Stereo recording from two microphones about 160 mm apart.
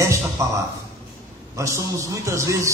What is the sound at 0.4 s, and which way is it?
Speech, 20° right (ahead or behind).